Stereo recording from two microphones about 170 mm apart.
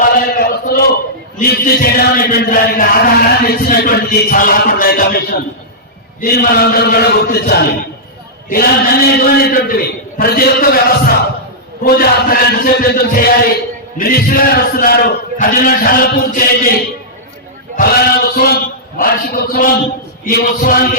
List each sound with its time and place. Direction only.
0.0 s a sound: 60° left (ahead or behind)
1.4 s chant: 60° left (ahead or behind)
17.7 s chant: 65° left (ahead or behind)